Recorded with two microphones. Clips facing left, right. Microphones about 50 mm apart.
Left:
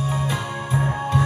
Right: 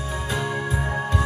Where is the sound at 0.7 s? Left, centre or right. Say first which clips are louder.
Left 3 dB; left.